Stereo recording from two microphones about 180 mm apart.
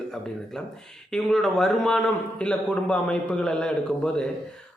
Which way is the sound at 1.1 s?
Centre (ahead or behind).